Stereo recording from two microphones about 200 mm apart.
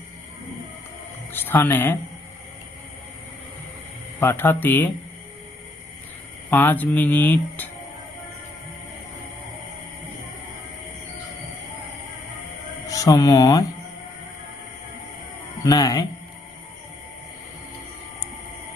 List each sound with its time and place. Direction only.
1.3 s speech: 10° left (ahead or behind)
4.2 s speech: 10° left (ahead or behind)
6.5 s speech: 10° left (ahead or behind)
12.9 s speech: 15° left (ahead or behind)
15.6 s speech: 15° left (ahead or behind)